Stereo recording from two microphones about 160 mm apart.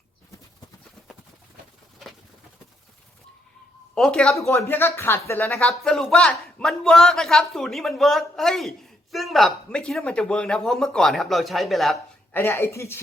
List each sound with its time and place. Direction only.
3.9 s speech: 5° left (ahead or behind)
4.4 s speech: 15° left (ahead or behind); by 11.9 s centre (ahead or behind)
12.3 s speech: 15° left (ahead or behind)